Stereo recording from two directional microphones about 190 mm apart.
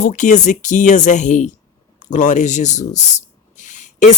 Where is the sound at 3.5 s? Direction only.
40° left (ahead or behind).